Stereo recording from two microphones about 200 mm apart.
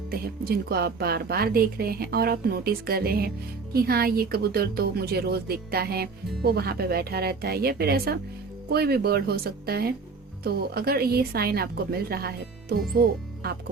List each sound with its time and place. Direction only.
0.1 s a woman's voice: 50° right (ahead or behind)